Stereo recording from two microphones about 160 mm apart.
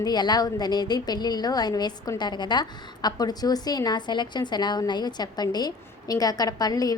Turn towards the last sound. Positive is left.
turn(degrees=25)  # may be behind; listen again after turning